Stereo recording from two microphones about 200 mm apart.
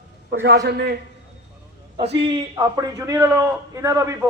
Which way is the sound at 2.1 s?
20° right (ahead or behind).